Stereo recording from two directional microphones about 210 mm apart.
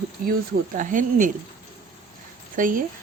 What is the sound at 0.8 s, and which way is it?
Speech, 40° right (ahead or behind).